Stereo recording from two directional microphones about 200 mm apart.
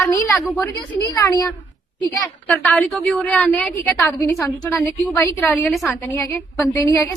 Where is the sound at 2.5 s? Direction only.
Centre (ahead or behind).